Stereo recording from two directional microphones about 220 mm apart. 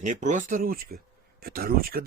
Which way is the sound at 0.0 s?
35° right (ahead or behind).